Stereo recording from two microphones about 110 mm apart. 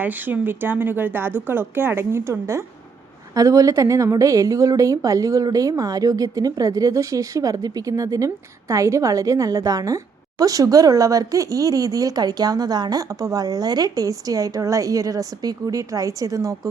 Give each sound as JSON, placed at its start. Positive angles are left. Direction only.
{"t": 0.0, "sound": "a woman's voice", "side_deg": -15}